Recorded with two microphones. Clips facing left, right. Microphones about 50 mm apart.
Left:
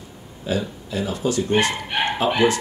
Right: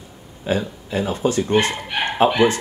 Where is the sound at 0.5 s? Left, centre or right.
Right.